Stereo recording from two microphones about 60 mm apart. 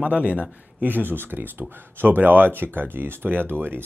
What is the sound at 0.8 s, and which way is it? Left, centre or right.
Speech, right.